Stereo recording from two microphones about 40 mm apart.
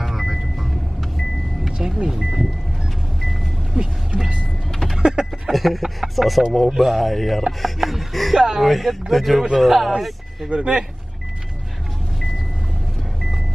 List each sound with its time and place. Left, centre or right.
0.0 s vehicle: centre
1.8 s speech: centre
3.7 s vehicle: right
4.9 s a sound: right
5.5 s speech: centre
7.6 s music: centre
8.4 s a sound: centre
8.6 s speech: centre
10.5 s speech: right